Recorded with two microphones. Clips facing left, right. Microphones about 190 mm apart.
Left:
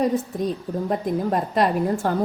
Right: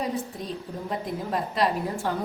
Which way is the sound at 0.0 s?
45° left (ahead or behind).